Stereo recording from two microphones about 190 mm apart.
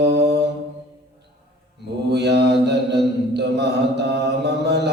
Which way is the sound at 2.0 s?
65° right (ahead or behind).